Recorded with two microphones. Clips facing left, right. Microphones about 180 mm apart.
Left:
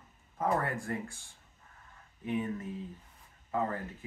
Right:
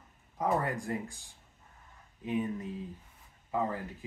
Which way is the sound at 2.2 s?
15° right (ahead or behind).